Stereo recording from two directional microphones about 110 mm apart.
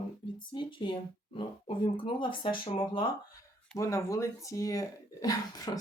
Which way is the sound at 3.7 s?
30° left (ahead or behind).